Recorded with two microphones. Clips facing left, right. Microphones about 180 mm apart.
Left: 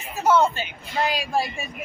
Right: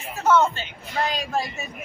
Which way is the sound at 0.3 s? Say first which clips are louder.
Even; 15° left (ahead or behind).